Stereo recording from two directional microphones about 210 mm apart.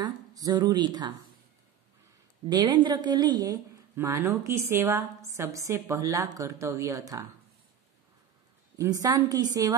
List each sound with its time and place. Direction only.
0.0 s speech: 20° right (ahead or behind)
2.5 s a woman's voice: 20° right (ahead or behind)
8.7 s a woman's voice: 15° right (ahead or behind)